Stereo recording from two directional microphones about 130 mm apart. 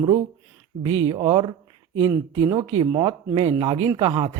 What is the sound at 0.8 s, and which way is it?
Speech, 40° right (ahead or behind).